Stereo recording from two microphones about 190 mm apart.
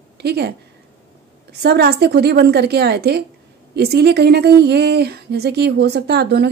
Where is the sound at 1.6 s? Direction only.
55° right (ahead or behind).